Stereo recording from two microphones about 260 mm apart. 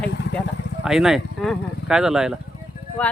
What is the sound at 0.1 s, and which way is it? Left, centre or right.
Speech, left.